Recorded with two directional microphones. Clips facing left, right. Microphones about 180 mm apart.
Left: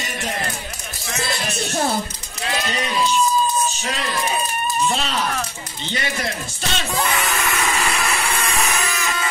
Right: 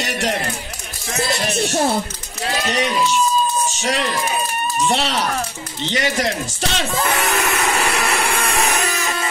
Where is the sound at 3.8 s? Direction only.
75° right (ahead or behind).